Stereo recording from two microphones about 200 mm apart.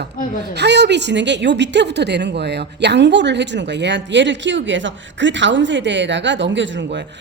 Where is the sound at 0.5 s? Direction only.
60° right (ahead or behind).